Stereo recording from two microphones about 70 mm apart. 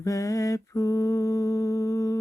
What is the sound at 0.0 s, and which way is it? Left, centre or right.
Mantra, left.